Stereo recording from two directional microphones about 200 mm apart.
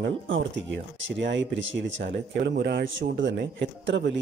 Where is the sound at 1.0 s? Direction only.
65° right (ahead or behind).